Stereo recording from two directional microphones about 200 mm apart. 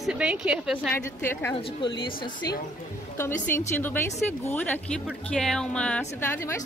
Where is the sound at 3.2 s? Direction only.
10° left (ahead or behind).